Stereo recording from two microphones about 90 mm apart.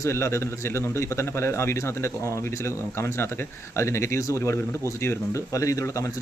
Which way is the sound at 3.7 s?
30° left (ahead or behind).